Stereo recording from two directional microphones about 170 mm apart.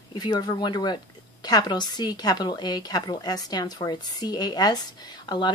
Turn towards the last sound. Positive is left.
turn(degrees=25)  # may be behind; listen again after turning